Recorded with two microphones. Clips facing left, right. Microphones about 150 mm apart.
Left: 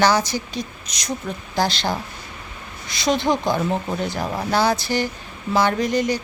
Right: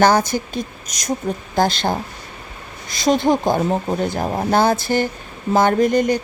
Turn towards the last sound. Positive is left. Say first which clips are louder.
# right 5 dB
turn(degrees=-55)  # may be behind; listen again after turning